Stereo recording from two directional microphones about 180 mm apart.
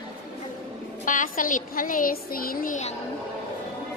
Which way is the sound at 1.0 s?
45° left (ahead or behind).